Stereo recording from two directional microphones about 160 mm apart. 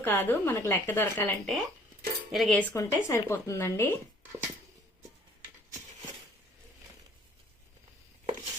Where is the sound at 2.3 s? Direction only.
Centre (ahead or behind).